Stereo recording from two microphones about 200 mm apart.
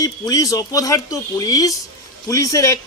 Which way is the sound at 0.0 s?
15° left (ahead or behind).